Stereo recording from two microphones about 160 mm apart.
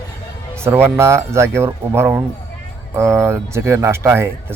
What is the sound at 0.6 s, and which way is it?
Speech, 15° right (ahead or behind).